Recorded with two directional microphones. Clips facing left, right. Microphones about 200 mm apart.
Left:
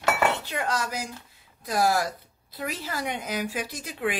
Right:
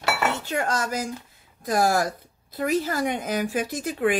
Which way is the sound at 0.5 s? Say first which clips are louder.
Right 3 dB; 45° right (ahead or behind).